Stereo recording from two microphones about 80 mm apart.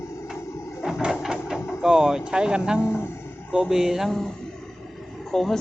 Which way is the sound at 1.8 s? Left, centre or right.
Centre.